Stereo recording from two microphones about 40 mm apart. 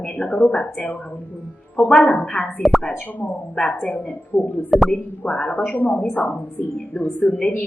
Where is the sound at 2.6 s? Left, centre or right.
Centre.